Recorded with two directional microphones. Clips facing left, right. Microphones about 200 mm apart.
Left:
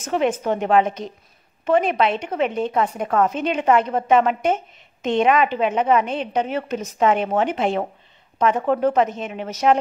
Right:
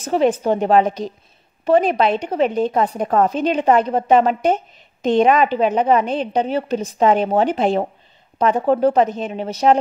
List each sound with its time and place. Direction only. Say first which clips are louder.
0.0 s speech: right 4 dB; 35° right (ahead or behind)